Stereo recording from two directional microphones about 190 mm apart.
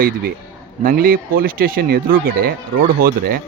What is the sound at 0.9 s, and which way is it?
A man's voice, 50° right (ahead or behind).